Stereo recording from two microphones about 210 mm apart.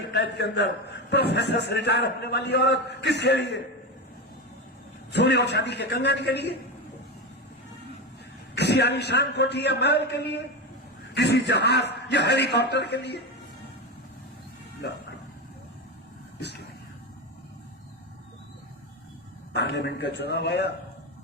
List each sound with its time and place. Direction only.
0.1 s a man's voice: 55° left (ahead or behind)
5.1 s a man's voice: 55° left (ahead or behind)
8.5 s a man's voice: 55° left (ahead or behind)
19.5 s a man's voice: 50° left (ahead or behind)